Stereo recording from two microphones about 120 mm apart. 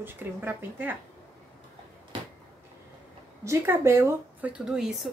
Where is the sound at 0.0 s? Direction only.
15° right (ahead or behind).